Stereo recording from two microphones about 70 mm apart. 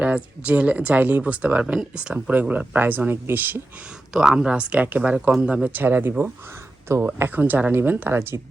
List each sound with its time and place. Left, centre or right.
0.0 s speech: centre
4.1 s speech: centre; by 6.1 s right
6.1 s speech: right